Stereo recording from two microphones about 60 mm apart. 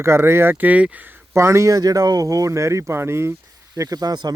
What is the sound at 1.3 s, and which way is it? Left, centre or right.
Speech, right.